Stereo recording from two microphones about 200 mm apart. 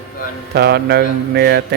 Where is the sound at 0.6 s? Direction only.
55° right (ahead or behind).